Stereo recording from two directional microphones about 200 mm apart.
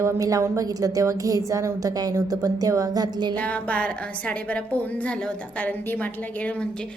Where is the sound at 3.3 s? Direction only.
5° left (ahead or behind).